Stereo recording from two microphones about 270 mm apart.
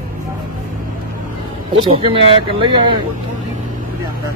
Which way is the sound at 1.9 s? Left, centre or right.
Right.